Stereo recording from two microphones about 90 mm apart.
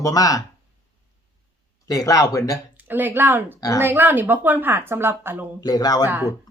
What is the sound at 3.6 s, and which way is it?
Speech, 40° left (ahead or behind).